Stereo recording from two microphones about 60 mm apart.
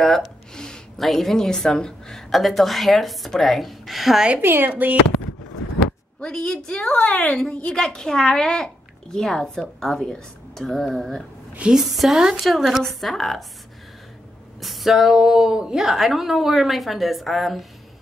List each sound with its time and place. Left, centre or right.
0.6 s a sound: centre
1.0 s a woman's voice: centre
4.4 s speech: right
6.2 s a child's voice: centre
14.6 s a woman's voice: centre